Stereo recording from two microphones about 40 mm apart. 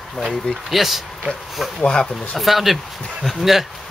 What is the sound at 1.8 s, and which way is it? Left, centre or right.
Speech, left.